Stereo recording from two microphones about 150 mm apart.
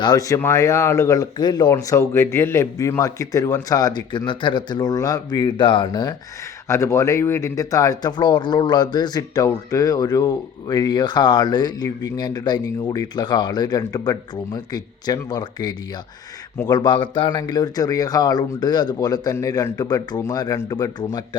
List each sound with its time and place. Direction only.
0.0 s speech: 25° left (ahead or behind)